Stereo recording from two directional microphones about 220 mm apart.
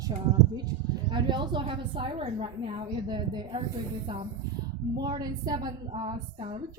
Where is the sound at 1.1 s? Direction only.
20° right (ahead or behind).